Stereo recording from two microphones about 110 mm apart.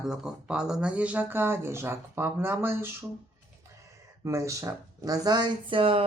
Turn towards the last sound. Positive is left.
turn(degrees=-55)  # may be behind; listen again after turning